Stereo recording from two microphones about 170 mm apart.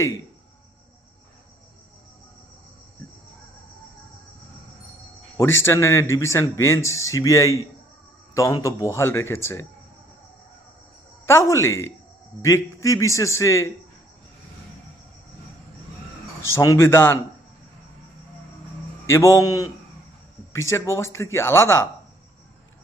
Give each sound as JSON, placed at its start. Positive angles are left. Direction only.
{"t": 5.4, "sound": "speech", "side_deg": 15}
{"t": 11.3, "sound": "speech", "side_deg": 15}
{"t": 16.6, "sound": "speech", "side_deg": 15}
{"t": 19.0, "sound": "speech", "side_deg": 15}